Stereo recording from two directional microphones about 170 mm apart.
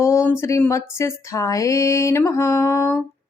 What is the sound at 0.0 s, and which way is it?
Speech, 15° left (ahead or behind).